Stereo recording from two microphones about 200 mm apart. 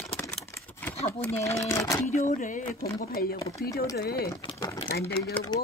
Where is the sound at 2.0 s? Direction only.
35° left (ahead or behind).